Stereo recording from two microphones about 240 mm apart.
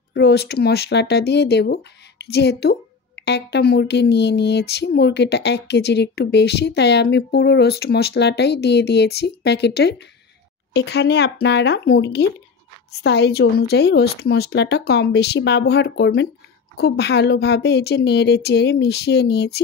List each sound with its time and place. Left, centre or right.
0.1 s speech: left